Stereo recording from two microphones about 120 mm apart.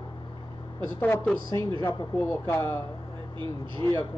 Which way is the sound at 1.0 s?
15° left (ahead or behind).